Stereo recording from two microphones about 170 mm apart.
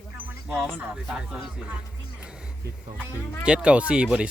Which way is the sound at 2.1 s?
5° right (ahead or behind).